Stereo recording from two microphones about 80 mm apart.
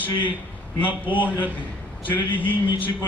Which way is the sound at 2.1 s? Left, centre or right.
Left.